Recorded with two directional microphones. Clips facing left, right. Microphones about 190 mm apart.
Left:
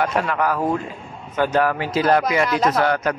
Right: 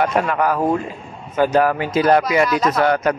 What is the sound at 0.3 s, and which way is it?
A man's voice, 20° right (ahead or behind).